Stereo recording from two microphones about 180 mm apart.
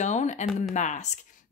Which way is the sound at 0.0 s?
40° left (ahead or behind).